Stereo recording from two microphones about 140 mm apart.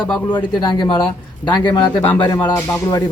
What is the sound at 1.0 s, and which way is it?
A man's voice, 15° left (ahead or behind).